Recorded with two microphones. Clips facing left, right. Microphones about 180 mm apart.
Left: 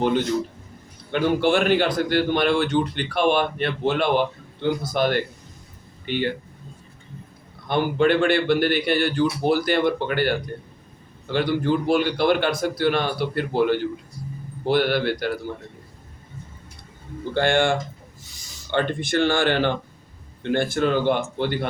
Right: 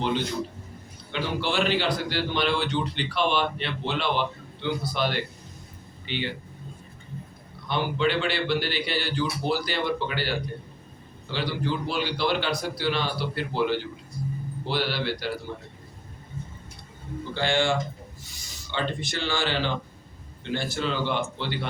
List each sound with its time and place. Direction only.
1.1 s a man's voice: 50° left (ahead or behind)
7.7 s a man's voice: 50° left (ahead or behind)
17.3 s a man's voice: 55° left (ahead or behind)